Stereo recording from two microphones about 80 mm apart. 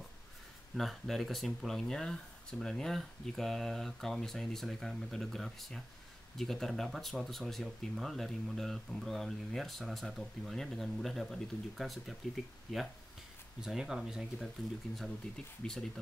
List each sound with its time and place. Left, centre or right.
0.7 s speech: centre
13.6 s speech: centre
15.0 s speech: centre